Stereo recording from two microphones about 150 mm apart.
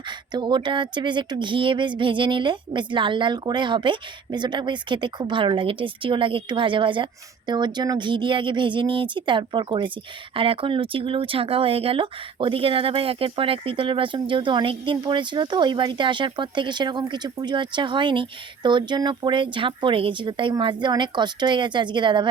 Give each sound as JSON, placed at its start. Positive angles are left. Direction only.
{"t": 0.3, "sound": "speech", "side_deg": -30}